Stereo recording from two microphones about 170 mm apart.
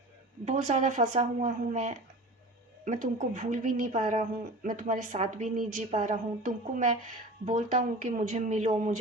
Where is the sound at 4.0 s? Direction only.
35° right (ahead or behind).